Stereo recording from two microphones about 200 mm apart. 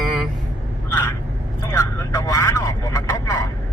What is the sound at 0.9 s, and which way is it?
Speech, 10° left (ahead or behind).